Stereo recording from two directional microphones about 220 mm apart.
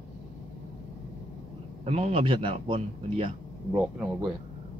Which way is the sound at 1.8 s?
25° right (ahead or behind).